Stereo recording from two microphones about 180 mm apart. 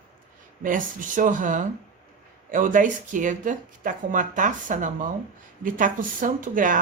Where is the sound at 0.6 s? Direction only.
50° right (ahead or behind).